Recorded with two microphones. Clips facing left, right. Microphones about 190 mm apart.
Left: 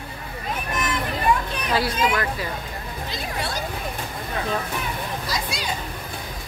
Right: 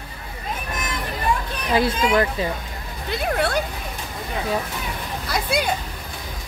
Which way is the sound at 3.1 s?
60° right (ahead or behind).